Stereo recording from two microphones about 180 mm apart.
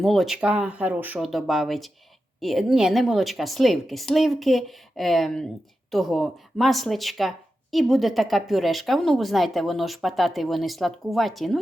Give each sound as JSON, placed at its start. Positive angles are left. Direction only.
{"t": 0.0, "sound": "speech", "side_deg": 0}